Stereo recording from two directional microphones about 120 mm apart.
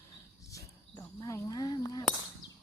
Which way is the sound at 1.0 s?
25° left (ahead or behind).